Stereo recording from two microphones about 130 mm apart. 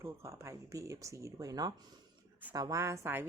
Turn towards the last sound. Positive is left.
turn(degrees=-15)  # may be behind; listen again after turning